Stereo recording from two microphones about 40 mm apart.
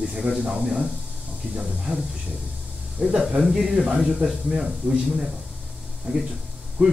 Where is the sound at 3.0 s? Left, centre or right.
Centre.